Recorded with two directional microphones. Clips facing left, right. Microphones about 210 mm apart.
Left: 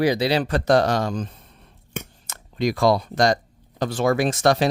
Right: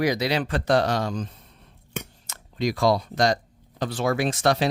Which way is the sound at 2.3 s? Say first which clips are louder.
Left 3 dB; 55° left (ahead or behind).